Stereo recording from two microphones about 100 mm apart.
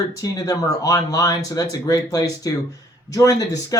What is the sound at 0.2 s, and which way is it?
Speech, 35° left (ahead or behind).